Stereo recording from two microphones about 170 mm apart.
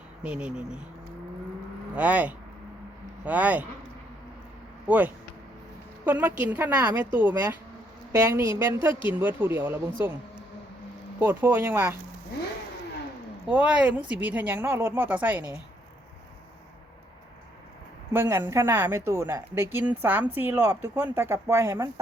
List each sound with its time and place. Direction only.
0.2 s a woman's voice: 5° right (ahead or behind)
2.0 s a woman's voice: 10° right (ahead or behind)
4.9 s a woman's voice: 10° right (ahead or behind)
11.2 s a woman's voice: 10° right (ahead or behind)
13.5 s a woman's voice: 10° right (ahead or behind)
18.1 s a woman's voice: 15° right (ahead or behind)